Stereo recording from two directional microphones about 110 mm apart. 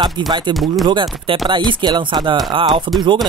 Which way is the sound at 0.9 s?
45° right (ahead or behind).